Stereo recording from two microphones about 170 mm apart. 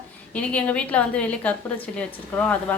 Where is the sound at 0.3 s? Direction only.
10° left (ahead or behind).